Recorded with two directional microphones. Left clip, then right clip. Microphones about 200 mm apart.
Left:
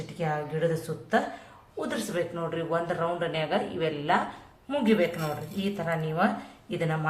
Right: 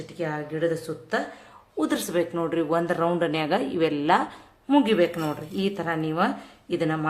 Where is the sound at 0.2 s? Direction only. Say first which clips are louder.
Right 1 dB; 40° right (ahead or behind).